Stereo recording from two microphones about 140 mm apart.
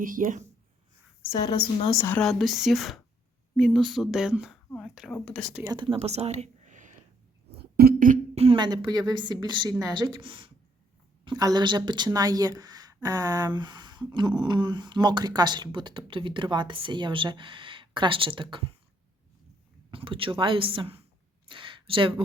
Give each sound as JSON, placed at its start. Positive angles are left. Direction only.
{"t": 0.0, "sound": "speech", "side_deg": -75}
{"t": 1.4, "sound": "a woman's voice", "side_deg": 30}
{"t": 2.2, "sound": "speech", "side_deg": 0}
{"t": 5.6, "sound": "speech", "side_deg": -35}
{"t": 6.1, "sound": "a sound", "side_deg": -50}
{"t": 7.8, "sound": "music", "side_deg": -85}
{"t": 8.5, "sound": "speech", "side_deg": -30}
{"t": 11.3, "sound": "speech", "side_deg": -30}
{"t": 19.9, "sound": "speech", "side_deg": -40}
{"t": 21.4, "sound": "a sound", "side_deg": -35}